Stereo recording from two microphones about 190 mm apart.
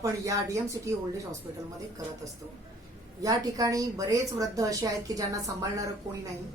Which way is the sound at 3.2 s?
15° right (ahead or behind).